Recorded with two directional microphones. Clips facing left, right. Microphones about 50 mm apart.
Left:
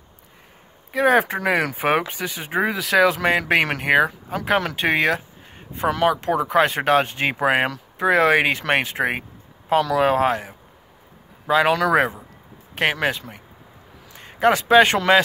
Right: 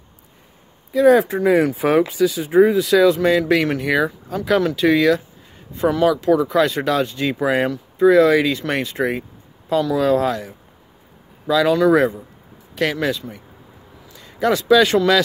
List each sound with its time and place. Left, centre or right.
0.9 s speech: left
4.4 s speech: left